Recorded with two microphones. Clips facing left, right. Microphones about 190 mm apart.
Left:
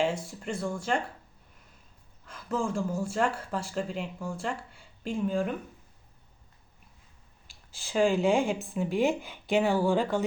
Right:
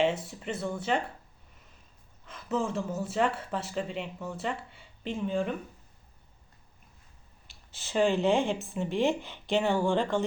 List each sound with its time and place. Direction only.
0.3 s speech: 5° right (ahead or behind)
2.2 s speech: 5° right (ahead or behind)
7.7 s speech: centre (ahead or behind)